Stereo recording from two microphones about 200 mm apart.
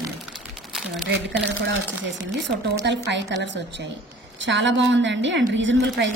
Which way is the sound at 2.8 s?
60° right (ahead or behind).